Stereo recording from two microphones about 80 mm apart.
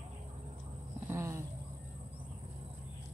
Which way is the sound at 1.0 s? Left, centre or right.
Right.